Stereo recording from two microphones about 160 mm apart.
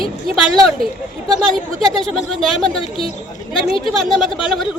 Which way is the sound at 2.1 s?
Centre (ahead or behind).